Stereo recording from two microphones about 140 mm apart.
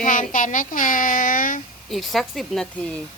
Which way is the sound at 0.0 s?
70° left (ahead or behind).